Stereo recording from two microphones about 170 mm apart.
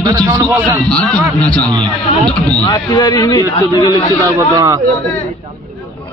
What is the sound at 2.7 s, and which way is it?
A man's voice, 20° left (ahead or behind).